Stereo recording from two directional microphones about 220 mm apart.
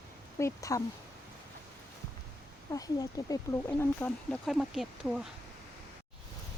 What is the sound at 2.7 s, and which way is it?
Speech, 15° left (ahead or behind).